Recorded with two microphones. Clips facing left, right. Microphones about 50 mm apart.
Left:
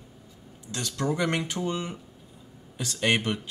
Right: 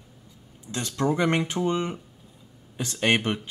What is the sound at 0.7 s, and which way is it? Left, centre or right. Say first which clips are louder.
Speech: right 3 dB; right.